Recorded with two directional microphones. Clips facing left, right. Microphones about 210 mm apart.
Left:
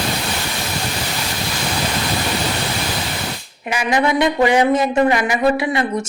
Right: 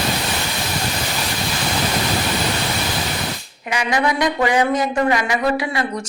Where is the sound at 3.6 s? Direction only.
25° left (ahead or behind).